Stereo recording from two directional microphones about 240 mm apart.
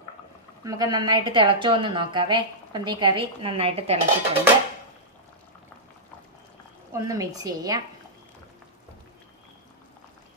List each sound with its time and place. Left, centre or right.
0.7 s a woman's voice: centre
6.9 s a woman's voice: centre